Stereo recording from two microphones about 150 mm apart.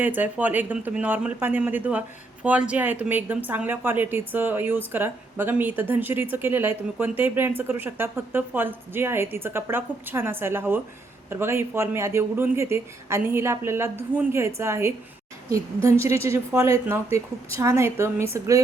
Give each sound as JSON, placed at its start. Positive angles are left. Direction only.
{"t": 0.0, "sound": "a woman's voice", "side_deg": -10}